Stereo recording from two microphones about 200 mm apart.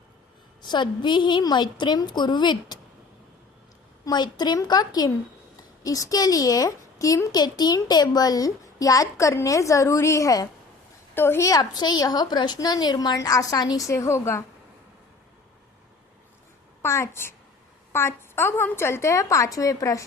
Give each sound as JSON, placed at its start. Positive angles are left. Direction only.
{"t": 0.6, "sound": "a woman's voice", "side_deg": 20}
{"t": 4.0, "sound": "a woman's voice", "side_deg": 20}
{"t": 16.8, "sound": "a woman's voice", "side_deg": 15}